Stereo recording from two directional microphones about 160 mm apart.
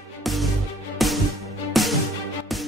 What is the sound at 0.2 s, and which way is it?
Music, centre (ahead or behind).